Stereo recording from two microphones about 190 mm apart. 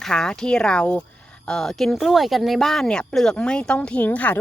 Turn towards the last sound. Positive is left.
turn(degrees=10)  # may be behind; listen again after turning